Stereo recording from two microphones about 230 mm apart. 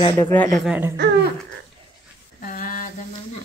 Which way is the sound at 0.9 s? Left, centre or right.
Right.